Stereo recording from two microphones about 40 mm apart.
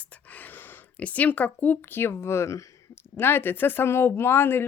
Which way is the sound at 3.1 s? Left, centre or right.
Left.